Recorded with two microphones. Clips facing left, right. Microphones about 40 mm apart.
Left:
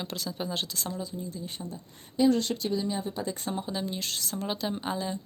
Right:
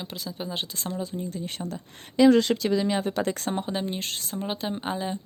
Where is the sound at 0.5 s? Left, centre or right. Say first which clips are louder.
Right 1 dB; right.